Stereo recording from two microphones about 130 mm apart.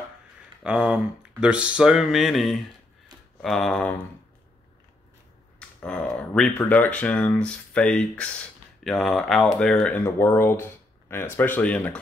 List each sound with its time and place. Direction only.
0.7 s mantra: 5° right (ahead or behind)
3.4 s speech: 5° left (ahead or behind)
5.6 s speech: 10° left (ahead or behind)
9.8 s speech: 15° left (ahead or behind)